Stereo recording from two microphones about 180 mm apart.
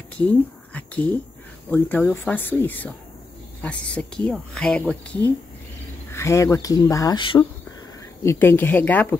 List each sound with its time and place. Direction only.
0.2 s speech: 10° left (ahead or behind); by 7.4 s 25° left (ahead or behind)
8.2 s speech: 15° left (ahead or behind)